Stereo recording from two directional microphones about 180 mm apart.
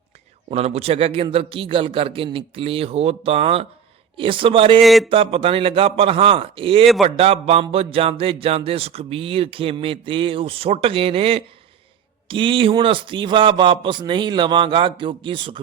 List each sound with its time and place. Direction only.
0.5 s a man's voice: 35° right (ahead or behind)
4.8 s speech: centre (ahead or behind)
5.0 s a man's voice: 30° right (ahead or behind)